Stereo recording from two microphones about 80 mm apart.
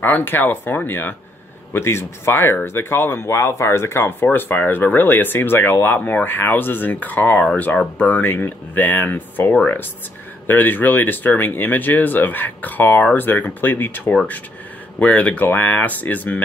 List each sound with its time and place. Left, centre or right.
0.0 s speech: left